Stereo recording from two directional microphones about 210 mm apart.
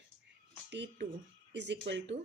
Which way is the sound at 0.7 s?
55° right (ahead or behind).